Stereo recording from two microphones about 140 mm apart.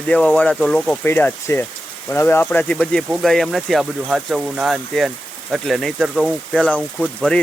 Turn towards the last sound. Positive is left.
turn(degrees=10)  # may be behind; listen again after turning